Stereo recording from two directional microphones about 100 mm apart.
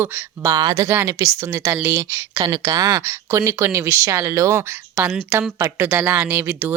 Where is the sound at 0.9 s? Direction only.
30° right (ahead or behind).